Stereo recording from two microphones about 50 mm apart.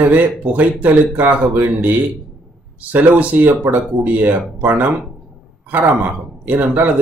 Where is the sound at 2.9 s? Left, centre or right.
Right.